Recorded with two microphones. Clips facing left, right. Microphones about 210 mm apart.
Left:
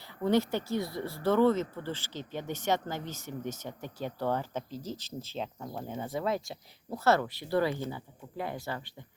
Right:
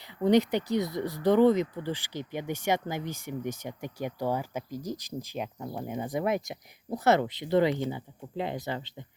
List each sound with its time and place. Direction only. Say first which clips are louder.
0.0 s speech: right 4 dB; 15° right (ahead or behind)